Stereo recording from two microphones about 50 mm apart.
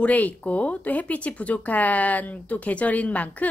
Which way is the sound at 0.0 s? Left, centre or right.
Left.